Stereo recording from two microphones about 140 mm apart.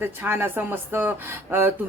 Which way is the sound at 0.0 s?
15° right (ahead or behind).